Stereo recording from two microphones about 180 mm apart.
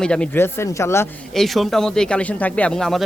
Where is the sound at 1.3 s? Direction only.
Centre (ahead or behind).